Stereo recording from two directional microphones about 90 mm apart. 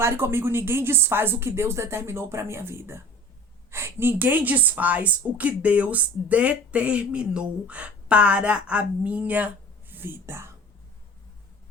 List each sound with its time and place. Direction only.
0.0 s a woman's voice: 30° right (ahead or behind)